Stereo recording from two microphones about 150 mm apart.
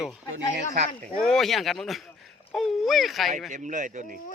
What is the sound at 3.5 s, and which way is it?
Speech, 55° right (ahead or behind).